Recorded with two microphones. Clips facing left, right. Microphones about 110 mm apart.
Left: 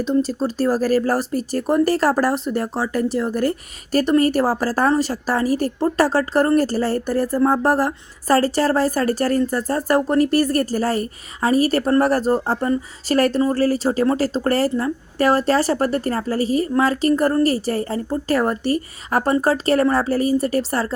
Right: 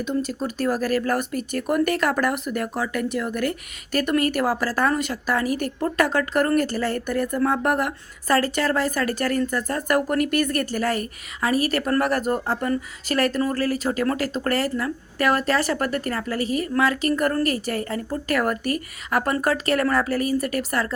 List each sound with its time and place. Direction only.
0.0 s speech: 35° left (ahead or behind)